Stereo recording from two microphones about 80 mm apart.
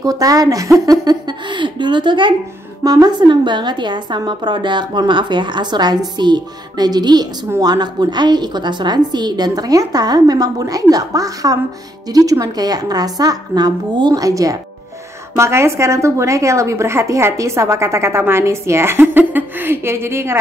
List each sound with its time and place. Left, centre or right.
0.0 s a woman's voice: right
2.8 s a woman's voice: right
14.2 s a woman's voice: right
15.3 s a woman's voice: right